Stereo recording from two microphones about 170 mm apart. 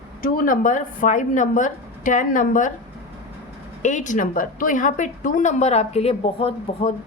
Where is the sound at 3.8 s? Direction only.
45° left (ahead or behind).